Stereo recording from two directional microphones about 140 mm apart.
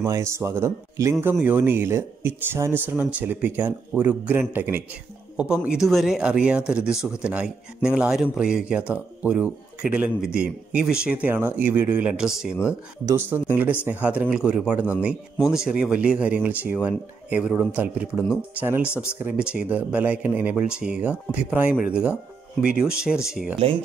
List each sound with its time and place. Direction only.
0.0 s speech: 20° right (ahead or behind); by 12.5 s 5° right (ahead or behind)
13.0 s speech: 15° right (ahead or behind)